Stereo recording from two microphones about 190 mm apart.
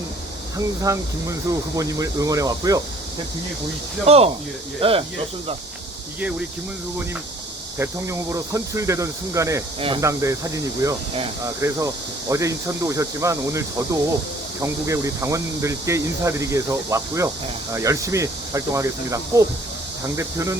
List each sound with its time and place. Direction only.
0.5 s speech: 15° right (ahead or behind)
4.0 s speech: 30° right (ahead or behind)
7.8 s speech: 15° right (ahead or behind)